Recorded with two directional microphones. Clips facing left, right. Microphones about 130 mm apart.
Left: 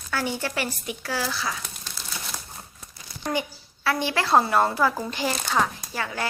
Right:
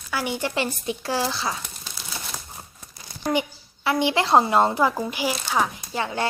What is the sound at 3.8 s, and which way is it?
Speech, 20° right (ahead or behind).